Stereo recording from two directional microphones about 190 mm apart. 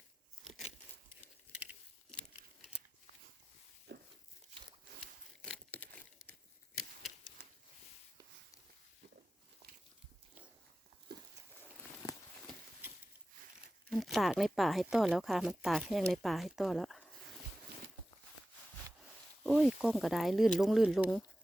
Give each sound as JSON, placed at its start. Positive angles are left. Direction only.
{"t": 0.4, "sound": "a sound", "side_deg": 0}
{"t": 2.0, "sound": "crumpling", "side_deg": 5}
{"t": 3.9, "sound": "tearing", "side_deg": -65}
{"t": 5.4, "sound": "crumpling", "side_deg": 5}
{"t": 13.9, "sound": "speech", "side_deg": 0}
{"t": 19.4, "sound": "speech", "side_deg": -5}